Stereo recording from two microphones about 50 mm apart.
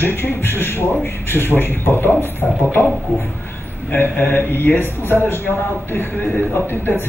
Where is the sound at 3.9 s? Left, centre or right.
Left.